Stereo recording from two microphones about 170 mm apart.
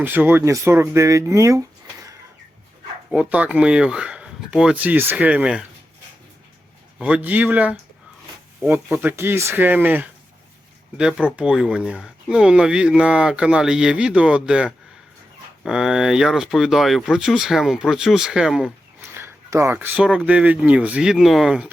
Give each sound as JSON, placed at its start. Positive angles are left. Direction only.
{"t": 0.0, "sound": "speech", "side_deg": -10}
{"t": 3.1, "sound": "speech", "side_deg": -5}
{"t": 7.0, "sound": "speech", "side_deg": -10}
{"t": 19.0, "sound": "speech", "side_deg": -15}